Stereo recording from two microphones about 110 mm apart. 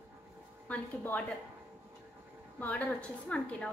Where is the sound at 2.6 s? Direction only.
15° left (ahead or behind).